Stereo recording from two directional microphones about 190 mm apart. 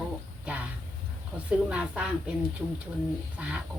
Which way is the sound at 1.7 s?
5° right (ahead or behind).